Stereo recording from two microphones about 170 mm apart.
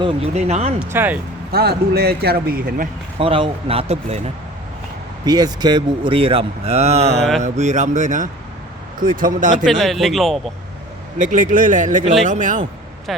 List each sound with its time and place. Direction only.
0.0 s speech: 35° right (ahead or behind)
0.8 s speech: 10° right (ahead or behind)
1.5 s speech: 70° right (ahead or behind)
3.2 s speech: 30° right (ahead or behind)
5.2 s speech: 25° right (ahead or behind)
7.2 s speech: centre (ahead or behind)
7.4 s speech: 45° right (ahead or behind)
9.6 s speech: centre (ahead or behind)
11.2 s speech: 45° right (ahead or behind)
13.1 s speech: centre (ahead or behind)